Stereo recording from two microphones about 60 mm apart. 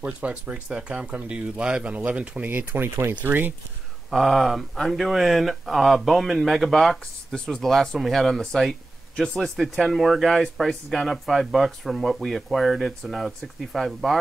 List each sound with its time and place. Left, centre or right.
0.0 s speech: right
2.5 s speech: right
4.1 s speech: centre